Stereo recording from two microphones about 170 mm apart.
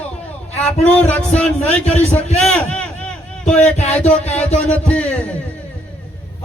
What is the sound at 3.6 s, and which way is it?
Speech, 40° left (ahead or behind).